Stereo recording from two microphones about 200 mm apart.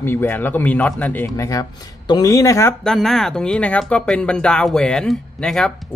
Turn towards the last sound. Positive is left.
turn(degrees=5)  # may be behind; listen again after turning